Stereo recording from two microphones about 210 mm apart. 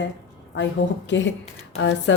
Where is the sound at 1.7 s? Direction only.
55° left (ahead or behind).